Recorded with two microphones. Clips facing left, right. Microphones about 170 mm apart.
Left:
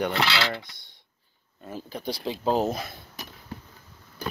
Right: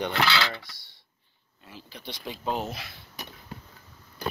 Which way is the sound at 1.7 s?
45° left (ahead or behind).